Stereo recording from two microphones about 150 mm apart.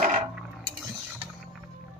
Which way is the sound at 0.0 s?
55° right (ahead or behind).